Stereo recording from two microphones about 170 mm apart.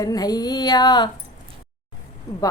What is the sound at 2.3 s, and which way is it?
Speech, 20° left (ahead or behind).